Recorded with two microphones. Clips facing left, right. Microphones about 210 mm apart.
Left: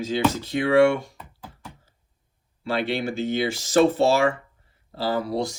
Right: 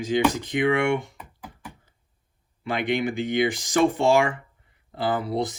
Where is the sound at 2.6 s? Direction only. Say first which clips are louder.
Even; 15° right (ahead or behind).